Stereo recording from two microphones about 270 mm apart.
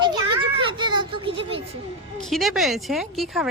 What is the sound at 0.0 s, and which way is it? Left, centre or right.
Children playing, centre.